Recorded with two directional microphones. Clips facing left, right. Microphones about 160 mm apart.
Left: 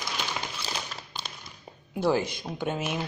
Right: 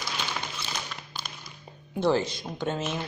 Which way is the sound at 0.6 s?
35° left (ahead or behind).